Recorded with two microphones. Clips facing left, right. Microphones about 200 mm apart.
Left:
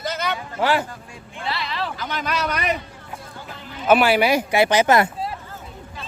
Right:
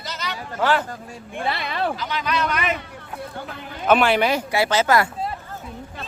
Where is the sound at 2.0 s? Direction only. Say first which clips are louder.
Right 1 dB; 50° left (ahead or behind).